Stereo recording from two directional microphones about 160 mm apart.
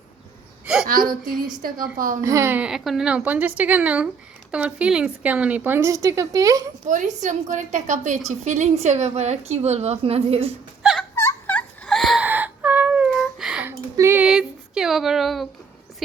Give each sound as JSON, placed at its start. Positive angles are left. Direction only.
{"t": 0.9, "sound": "a woman's voice", "side_deg": -60}
{"t": 2.2, "sound": "speech", "side_deg": -20}
{"t": 6.8, "sound": "a woman's voice", "side_deg": -50}
{"t": 11.1, "sound": "turkey", "side_deg": 15}
{"t": 12.2, "sound": "a sound", "side_deg": -10}
{"t": 14.3, "sound": "a sound", "side_deg": -5}